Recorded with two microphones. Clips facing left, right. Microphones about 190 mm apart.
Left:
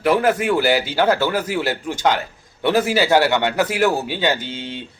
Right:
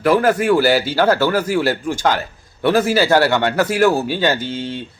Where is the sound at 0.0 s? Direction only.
20° left (ahead or behind).